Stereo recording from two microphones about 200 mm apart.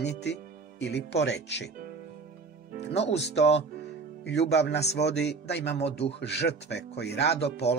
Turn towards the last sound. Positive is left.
turn(degrees=55)  # may be behind; listen again after turning